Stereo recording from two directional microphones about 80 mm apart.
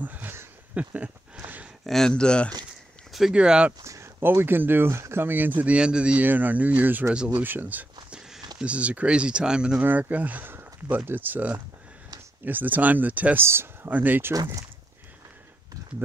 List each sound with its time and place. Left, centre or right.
0.0 s a sound: right
0.7 s speech: centre
1.4 s a sound: right
1.9 s speech: centre
3.1 s a sound: centre
3.3 s speech: centre
3.8 s speech: right; by 9.8 s centre
9.8 s speech: right
14.3 s speech: right